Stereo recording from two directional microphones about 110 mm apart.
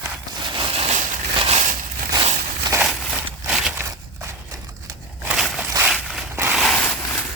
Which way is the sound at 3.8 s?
25° right (ahead or behind).